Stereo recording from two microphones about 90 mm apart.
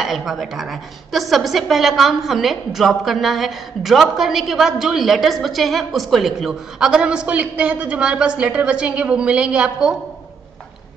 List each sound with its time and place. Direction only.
0.0 s a woman's voice: 5° right (ahead or behind)